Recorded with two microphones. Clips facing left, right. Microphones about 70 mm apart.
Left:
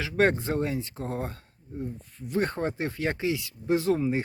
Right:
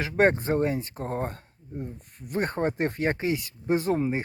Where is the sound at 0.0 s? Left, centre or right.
Right.